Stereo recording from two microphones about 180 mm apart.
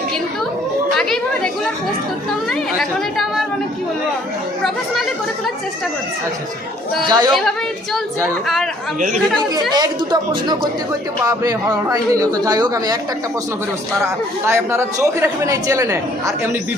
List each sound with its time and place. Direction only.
0.9 s chatter: 5° left (ahead or behind)
2.5 s speech: centre (ahead or behind)
7.1 s a man's voice: 25° right (ahead or behind)
9.4 s a man's voice: 25° right (ahead or behind)
14.4 s a man's voice: 15° right (ahead or behind)